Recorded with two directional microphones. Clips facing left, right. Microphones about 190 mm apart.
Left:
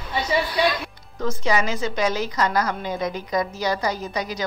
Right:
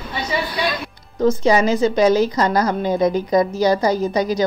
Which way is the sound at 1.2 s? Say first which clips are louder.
Right 8 dB; 35° right (ahead or behind).